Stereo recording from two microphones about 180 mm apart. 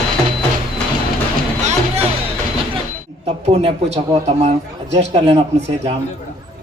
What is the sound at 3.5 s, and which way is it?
A man's voice, 35° right (ahead or behind).